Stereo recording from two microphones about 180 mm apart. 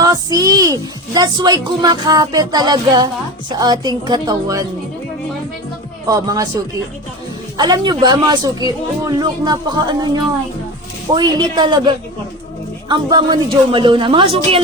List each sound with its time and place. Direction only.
0.0 s speech: 20° right (ahead or behind)
6.1 s speech: 20° right (ahead or behind)
7.5 s speech: 25° right (ahead or behind)